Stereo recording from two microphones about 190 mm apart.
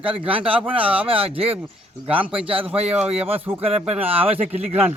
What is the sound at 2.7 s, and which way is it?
Speech, 35° right (ahead or behind).